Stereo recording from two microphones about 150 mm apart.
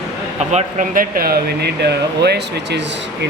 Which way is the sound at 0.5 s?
60° right (ahead or behind).